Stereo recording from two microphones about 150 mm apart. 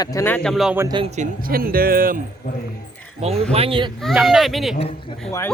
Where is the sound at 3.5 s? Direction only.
40° right (ahead or behind).